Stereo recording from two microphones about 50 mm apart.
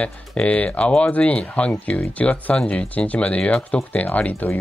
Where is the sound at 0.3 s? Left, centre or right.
Left.